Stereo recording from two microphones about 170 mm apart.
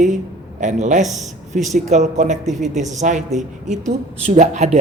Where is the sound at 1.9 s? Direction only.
45° right (ahead or behind).